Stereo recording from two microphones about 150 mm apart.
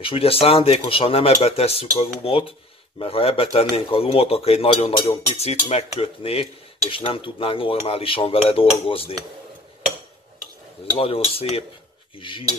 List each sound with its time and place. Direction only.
0.0 s speech: 35° left (ahead or behind)
5.4 s cutlery: 45° left (ahead or behind)
6.9 s speech: 35° left (ahead or behind)
11.0 s speech: 40° left (ahead or behind)